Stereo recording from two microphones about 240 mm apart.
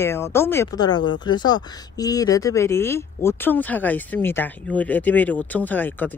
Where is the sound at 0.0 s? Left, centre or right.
Centre.